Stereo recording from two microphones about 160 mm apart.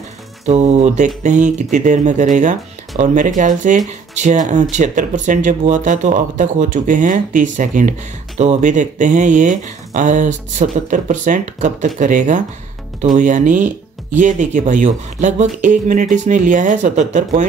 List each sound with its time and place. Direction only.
0.5 s speech: 45° right (ahead or behind)